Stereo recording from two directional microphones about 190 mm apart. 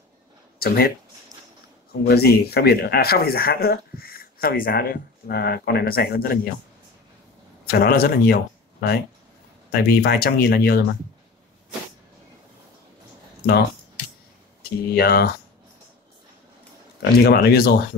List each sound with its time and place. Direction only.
0.6 s speech: 55° left (ahead or behind)
2.0 s speech: 55° left (ahead or behind)
7.6 s speech: 55° left (ahead or behind)
9.7 s speech: 55° left (ahead or behind)
14.6 s speech: 55° left (ahead or behind)
17.0 s speech: 55° left (ahead or behind)